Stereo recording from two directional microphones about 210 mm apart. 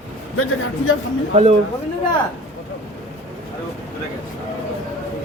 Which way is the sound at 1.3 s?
30° right (ahead or behind).